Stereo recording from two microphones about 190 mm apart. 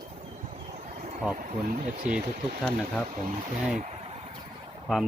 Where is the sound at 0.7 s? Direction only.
40° right (ahead or behind).